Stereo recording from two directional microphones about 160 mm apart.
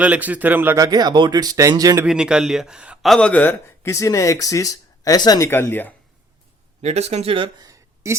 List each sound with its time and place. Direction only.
0.0 s speech: 10° right (ahead or behind)
2.0 s a man's voice: 5° right (ahead or behind)
3.8 s speech: 20° left (ahead or behind)
6.8 s speech: 40° right (ahead or behind); by 8.2 s 20° right (ahead or behind)